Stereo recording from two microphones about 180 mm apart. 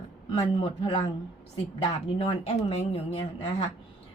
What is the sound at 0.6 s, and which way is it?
Speech, 25° left (ahead or behind).